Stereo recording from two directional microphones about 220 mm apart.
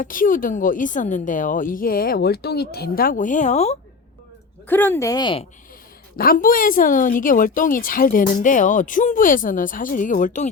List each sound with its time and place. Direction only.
0.0 s a woman's voice: 40° left (ahead or behind)
4.7 s speech: 10° left (ahead or behind)
6.1 s a woman's voice: 40° left (ahead or behind)